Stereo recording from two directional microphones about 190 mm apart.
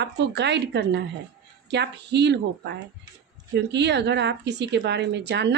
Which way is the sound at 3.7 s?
65° right (ahead or behind).